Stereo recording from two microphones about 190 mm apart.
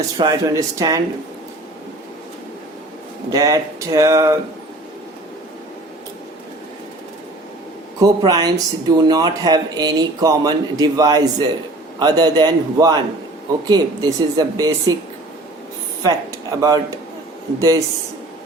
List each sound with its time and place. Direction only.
0.2 s speech: 20° right (ahead or behind)
3.3 s speech: 20° right (ahead or behind)
8.0 s speech: 20° right (ahead or behind)
16.0 s speech: 15° right (ahead or behind)